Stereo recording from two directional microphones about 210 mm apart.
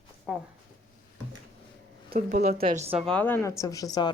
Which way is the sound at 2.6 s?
30° right (ahead or behind).